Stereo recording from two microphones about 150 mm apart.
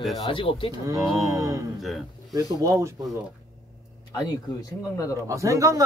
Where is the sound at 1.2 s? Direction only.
20° right (ahead or behind).